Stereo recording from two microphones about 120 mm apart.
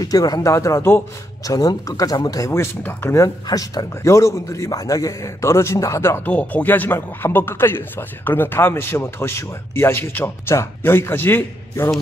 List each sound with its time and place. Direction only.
0.0 s a man's voice: 30° left (ahead or behind)